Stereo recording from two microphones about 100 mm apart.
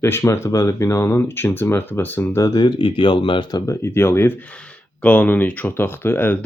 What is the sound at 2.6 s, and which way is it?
Speech, 55° left (ahead or behind).